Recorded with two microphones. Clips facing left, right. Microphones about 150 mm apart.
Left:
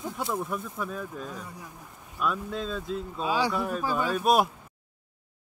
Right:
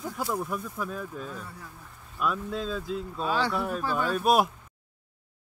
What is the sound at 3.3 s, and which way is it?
Speech, 10° left (ahead or behind).